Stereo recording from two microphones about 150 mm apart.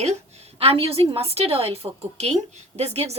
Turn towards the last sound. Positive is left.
turn(degrees=-45)  # may be behind; listen again after turning